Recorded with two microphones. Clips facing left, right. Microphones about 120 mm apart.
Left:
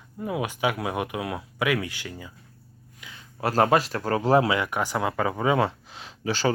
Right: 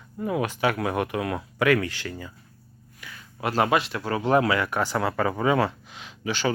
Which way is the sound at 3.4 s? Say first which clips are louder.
Left 2 dB; 35° left (ahead or behind).